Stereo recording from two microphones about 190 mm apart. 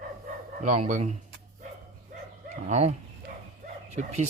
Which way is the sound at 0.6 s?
40° right (ahead or behind).